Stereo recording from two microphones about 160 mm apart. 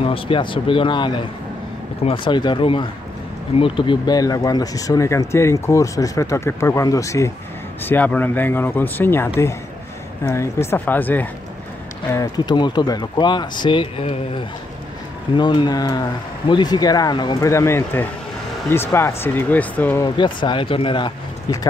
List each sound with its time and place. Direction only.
0.0 s speech: 35° left (ahead or behind); by 11.2 s 10° left (ahead or behind)
12.1 s speech: 25° left (ahead or behind)
20.0 s speech: 30° left (ahead or behind)